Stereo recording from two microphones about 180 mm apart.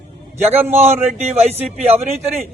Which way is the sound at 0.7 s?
35° right (ahead or behind).